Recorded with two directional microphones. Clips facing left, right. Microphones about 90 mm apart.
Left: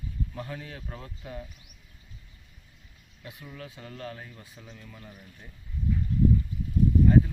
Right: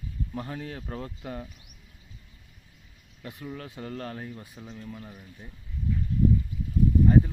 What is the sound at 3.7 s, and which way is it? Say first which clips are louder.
Speech: right 4 dB; 45° right (ahead or behind).